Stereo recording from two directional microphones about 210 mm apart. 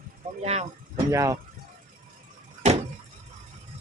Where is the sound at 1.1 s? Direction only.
15° right (ahead or behind).